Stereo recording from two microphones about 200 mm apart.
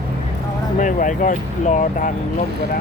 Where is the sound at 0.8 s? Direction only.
40° left (ahead or behind).